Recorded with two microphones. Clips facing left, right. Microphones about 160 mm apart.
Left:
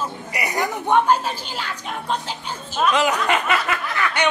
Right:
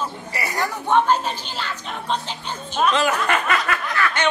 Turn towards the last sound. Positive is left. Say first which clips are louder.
# even
turn(degrees=15)  # may be behind; listen again after turning